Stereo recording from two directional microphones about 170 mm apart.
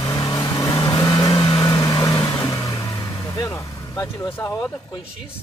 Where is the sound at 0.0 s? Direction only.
20° left (ahead or behind).